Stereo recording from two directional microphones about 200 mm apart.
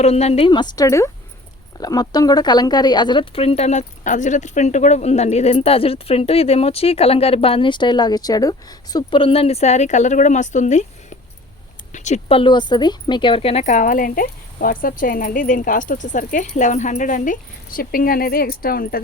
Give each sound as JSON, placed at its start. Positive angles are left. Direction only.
{"t": 0.0, "sound": "speech", "side_deg": 30}